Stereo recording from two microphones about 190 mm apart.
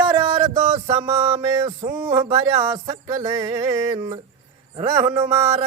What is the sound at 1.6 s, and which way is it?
Music, 20° right (ahead or behind).